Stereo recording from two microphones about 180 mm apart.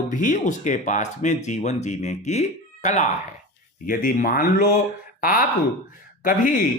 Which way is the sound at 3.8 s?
50° left (ahead or behind).